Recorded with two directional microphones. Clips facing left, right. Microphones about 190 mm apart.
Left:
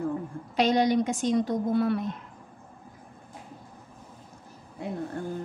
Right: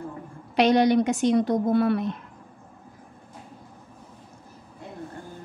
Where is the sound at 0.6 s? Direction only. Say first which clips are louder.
Right 4 dB; 65° right (ahead or behind).